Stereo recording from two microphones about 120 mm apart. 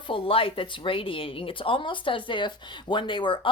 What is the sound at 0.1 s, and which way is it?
Speech, 50° left (ahead or behind).